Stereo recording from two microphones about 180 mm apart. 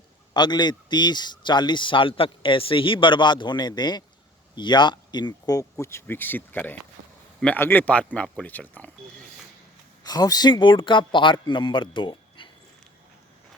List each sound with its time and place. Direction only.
0.3 s a man's voice: 25° left (ahead or behind); by 8.9 s 10° left (ahead or behind)
10.0 s a man's voice: 20° left (ahead or behind)